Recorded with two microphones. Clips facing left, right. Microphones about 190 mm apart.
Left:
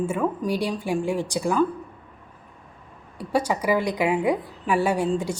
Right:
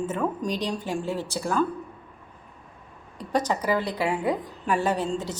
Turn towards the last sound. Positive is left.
turn(degrees=10)  # may be behind; listen again after turning